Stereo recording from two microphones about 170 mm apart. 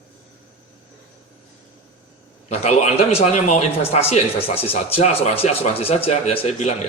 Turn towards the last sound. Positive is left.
turn(degrees=40)  # may be behind; listen again after turning